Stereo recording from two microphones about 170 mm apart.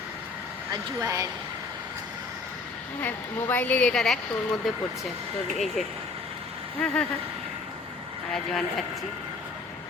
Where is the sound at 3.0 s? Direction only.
10° left (ahead or behind).